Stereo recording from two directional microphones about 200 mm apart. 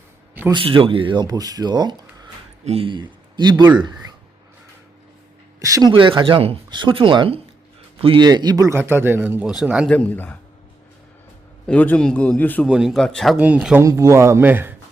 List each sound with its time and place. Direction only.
0.5 s a man's voice: 25° right (ahead or behind)
5.5 s a man's voice: 15° right (ahead or behind)
9.9 s a man's voice: 10° left (ahead or behind)
11.6 s a man's voice: 5° left (ahead or behind)
12.6 s a man's voice: centre (ahead or behind)